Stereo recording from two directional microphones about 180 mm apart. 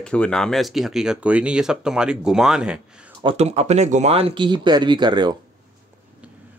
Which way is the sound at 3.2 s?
35° right (ahead or behind).